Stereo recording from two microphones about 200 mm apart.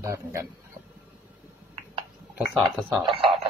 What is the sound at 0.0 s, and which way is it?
Speech, 15° right (ahead or behind).